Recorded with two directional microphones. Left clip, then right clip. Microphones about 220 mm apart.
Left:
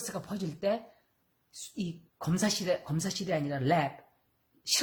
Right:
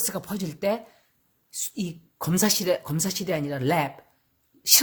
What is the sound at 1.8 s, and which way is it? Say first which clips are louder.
Speech: right 2 dB; 40° right (ahead or behind).